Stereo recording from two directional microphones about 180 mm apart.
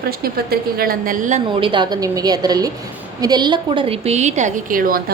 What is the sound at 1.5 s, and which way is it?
A woman's voice, 30° right (ahead or behind).